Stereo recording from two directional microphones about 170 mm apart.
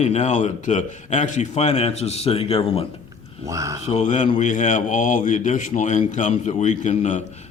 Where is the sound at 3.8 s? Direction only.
40° left (ahead or behind).